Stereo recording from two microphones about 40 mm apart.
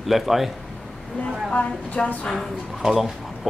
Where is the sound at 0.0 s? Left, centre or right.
Centre.